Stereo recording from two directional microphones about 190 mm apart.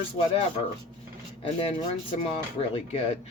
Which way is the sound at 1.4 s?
30° left (ahead or behind).